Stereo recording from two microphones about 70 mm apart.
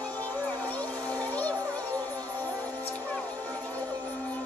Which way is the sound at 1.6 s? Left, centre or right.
Left.